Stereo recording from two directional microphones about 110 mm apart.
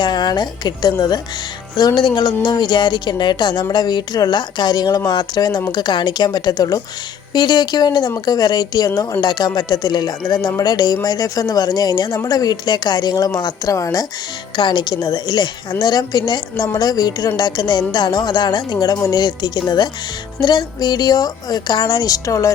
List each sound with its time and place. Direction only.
0.0 s a woman's voice: 40° left (ahead or behind)
14.5 s a woman's voice: 45° left (ahead or behind)